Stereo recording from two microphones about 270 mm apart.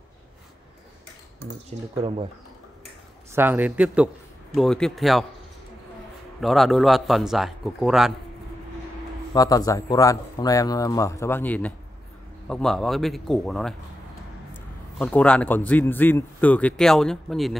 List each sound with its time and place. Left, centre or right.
1.4 s speech: right
2.0 s speech: centre
3.3 s a man's voice: centre
6.4 s a man's voice: centre
9.3 s a man's voice: centre
15.0 s a man's voice: centre